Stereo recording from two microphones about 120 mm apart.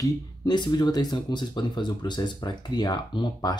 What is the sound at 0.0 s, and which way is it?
Speech, 35° left (ahead or behind).